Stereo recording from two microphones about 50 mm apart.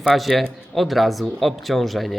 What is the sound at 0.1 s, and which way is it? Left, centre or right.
Speech, centre.